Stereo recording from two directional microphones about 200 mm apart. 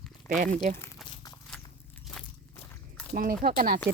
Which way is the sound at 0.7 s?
10° left (ahead or behind).